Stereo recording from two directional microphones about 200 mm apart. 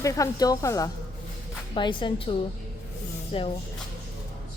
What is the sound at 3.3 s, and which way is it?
Speech, 30° left (ahead or behind).